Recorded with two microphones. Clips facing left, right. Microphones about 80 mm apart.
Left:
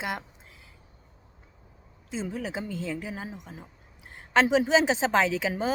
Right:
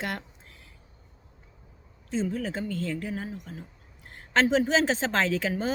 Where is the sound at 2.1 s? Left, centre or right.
Centre.